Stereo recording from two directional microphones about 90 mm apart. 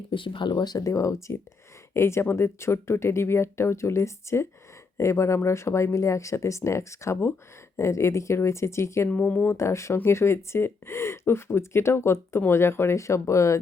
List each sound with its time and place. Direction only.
0.1 s speech: 65° left (ahead or behind); by 9.0 s 30° left (ahead or behind)
9.0 s speech: 15° left (ahead or behind); by 13.6 s 35° left (ahead or behind)